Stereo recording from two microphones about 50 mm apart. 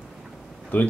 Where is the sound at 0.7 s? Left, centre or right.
Left.